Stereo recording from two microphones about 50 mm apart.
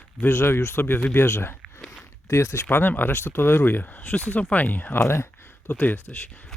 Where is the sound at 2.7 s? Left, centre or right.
Left.